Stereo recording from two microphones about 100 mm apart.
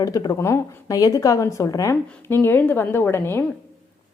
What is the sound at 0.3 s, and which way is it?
A woman's voice, 30° left (ahead or behind).